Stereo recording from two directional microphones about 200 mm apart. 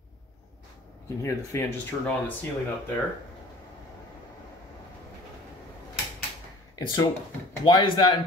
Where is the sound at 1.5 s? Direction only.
15° left (ahead or behind).